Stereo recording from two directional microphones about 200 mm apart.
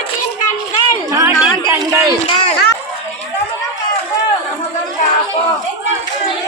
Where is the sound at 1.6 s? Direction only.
15° right (ahead or behind).